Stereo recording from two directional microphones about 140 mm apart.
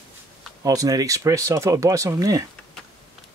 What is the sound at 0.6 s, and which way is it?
Speech, 25° right (ahead or behind).